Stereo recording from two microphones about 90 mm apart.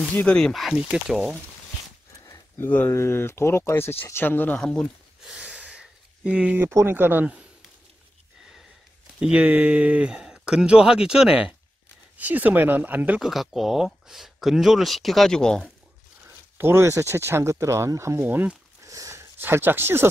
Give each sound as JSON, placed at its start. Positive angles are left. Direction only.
{"t": 0.1, "sound": "speech", "side_deg": 15}
{"t": 0.5, "sound": "speech", "side_deg": 0}
{"t": 2.6, "sound": "speech", "side_deg": 20}
{"t": 4.6, "sound": "speech", "side_deg": 10}
{"t": 5.2, "sound": "a sound", "side_deg": -10}
{"t": 6.7, "sound": "speech", "side_deg": -30}
{"t": 9.2, "sound": "speech", "side_deg": -15}
{"t": 13.2, "sound": "speech", "side_deg": 0}
{"t": 16.5, "sound": "speech", "side_deg": -30}
{"t": 18.2, "sound": "speech", "side_deg": -20}
{"t": 18.8, "sound": "a sound", "side_deg": -35}